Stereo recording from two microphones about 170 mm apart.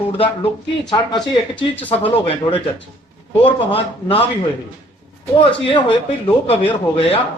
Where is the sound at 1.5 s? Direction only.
10° left (ahead or behind).